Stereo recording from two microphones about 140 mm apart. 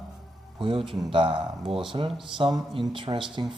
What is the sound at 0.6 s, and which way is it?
Speech, 40° right (ahead or behind).